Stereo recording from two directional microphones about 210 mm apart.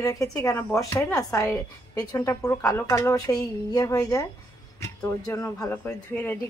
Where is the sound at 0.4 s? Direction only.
10° left (ahead or behind).